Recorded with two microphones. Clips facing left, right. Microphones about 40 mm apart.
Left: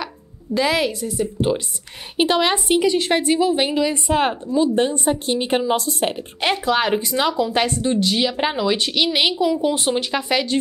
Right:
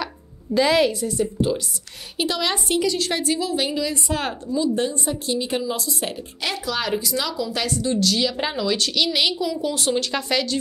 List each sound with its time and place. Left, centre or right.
0.6 s a woman's voice: centre
2.1 s a woman's voice: left